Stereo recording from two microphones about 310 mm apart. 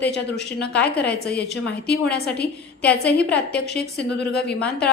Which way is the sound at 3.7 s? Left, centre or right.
Left.